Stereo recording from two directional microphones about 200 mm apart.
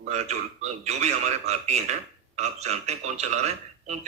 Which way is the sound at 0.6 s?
35° right (ahead or behind).